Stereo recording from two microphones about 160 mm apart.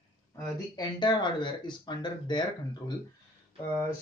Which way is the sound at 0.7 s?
25° left (ahead or behind).